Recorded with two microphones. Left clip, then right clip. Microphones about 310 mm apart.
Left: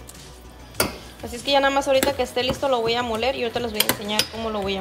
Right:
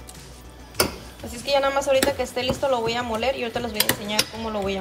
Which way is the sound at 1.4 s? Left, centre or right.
Centre.